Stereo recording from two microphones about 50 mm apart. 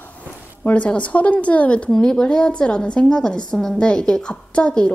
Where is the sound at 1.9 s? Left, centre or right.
Centre.